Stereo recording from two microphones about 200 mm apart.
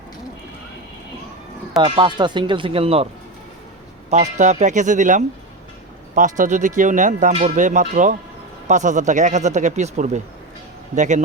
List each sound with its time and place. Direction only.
1.8 s speech: 20° right (ahead or behind)
4.1 s speech: 35° right (ahead or behind)